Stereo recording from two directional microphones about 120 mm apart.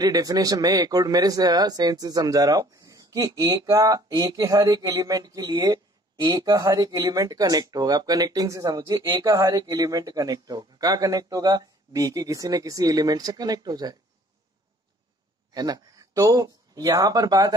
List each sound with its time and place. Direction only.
0.0 s speech: 30° right (ahead or behind)
15.5 s speech: 30° right (ahead or behind)